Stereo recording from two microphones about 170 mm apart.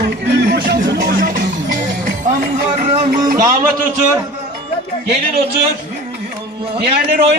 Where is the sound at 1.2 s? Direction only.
55° right (ahead or behind).